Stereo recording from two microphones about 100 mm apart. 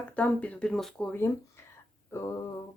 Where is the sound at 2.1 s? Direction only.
30° left (ahead or behind).